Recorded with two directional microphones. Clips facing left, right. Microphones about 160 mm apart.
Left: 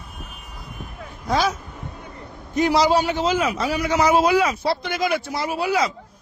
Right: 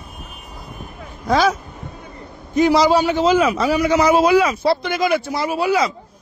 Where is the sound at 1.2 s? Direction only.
90° right.